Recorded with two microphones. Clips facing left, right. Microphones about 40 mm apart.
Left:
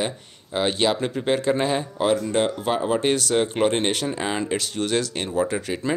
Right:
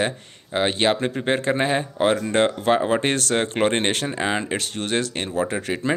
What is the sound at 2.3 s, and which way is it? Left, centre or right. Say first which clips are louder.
Speech: right 3 dB; right.